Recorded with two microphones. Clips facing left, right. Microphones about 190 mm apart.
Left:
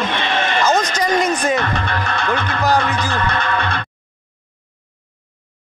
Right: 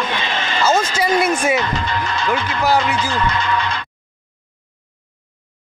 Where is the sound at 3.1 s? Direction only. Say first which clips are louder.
Right 1 dB; 55° left (ahead or behind).